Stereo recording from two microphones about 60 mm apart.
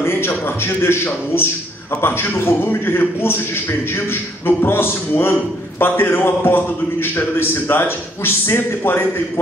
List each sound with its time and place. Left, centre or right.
0.0 s a man's voice: left